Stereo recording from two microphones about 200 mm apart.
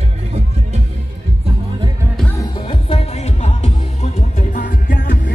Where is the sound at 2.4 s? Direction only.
25° left (ahead or behind).